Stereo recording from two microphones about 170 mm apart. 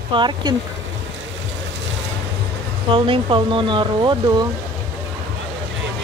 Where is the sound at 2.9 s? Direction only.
30° right (ahead or behind).